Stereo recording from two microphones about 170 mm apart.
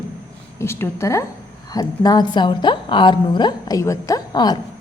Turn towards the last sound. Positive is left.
turn(degrees=25)  # may be behind; listen again after turning